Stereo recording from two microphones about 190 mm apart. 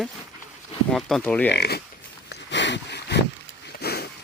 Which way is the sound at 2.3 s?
65° left (ahead or behind).